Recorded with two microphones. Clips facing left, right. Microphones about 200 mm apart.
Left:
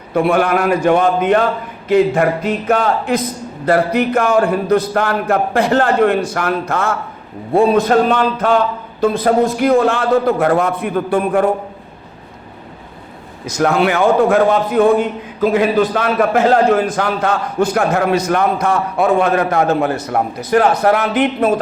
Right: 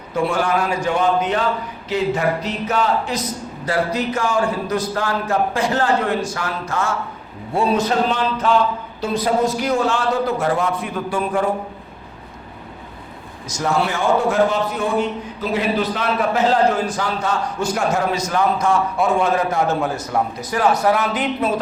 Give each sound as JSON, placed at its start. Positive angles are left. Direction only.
{"t": 0.1, "sound": "a man's voice", "side_deg": 60}
{"t": 13.5, "sound": "a man's voice", "side_deg": 60}